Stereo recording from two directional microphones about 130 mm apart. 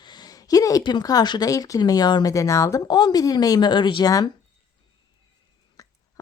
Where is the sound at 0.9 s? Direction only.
30° left (ahead or behind).